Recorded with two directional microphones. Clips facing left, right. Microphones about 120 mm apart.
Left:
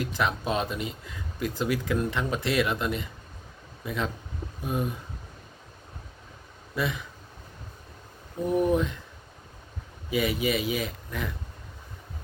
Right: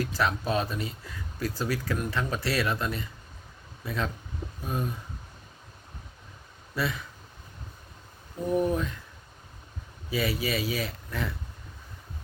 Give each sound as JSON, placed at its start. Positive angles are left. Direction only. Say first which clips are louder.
{"t": 0.0, "sound": "speech", "louder": "even", "side_deg": 15}
{"t": 6.7, "sound": "speech", "louder": "left 1 dB", "side_deg": 20}
{"t": 8.5, "sound": "speech", "louder": "left 3 dB", "side_deg": 15}
{"t": 10.1, "sound": "speech", "louder": "left 3 dB", "side_deg": 20}